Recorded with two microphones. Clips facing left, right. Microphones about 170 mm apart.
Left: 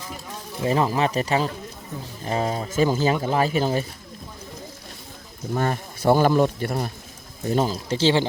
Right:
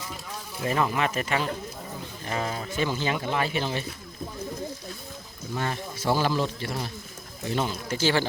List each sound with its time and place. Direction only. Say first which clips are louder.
0.6 s speech: left 4 dB; 30° left (ahead or behind)
5.5 s speech: left 5 dB; 45° left (ahead or behind)
7.4 s speech: left 6 dB; 40° left (ahead or behind)